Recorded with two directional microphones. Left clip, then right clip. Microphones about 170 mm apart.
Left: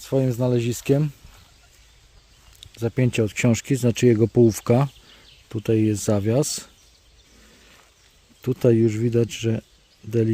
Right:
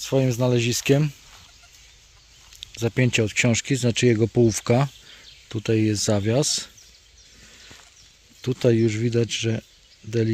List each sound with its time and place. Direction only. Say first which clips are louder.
0.0 s speech: right 1 dB; 5° left (ahead or behind)
2.6 s speech: right 1 dB; 5° left (ahead or behind)
8.4 s speech: left 2 dB; 20° left (ahead or behind)